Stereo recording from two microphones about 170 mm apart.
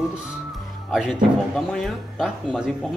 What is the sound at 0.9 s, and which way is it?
A man's voice, centre (ahead or behind).